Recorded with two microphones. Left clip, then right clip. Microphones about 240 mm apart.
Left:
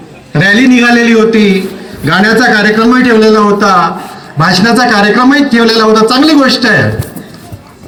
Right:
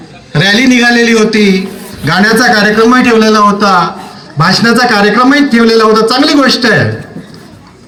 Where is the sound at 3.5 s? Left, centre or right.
Centre.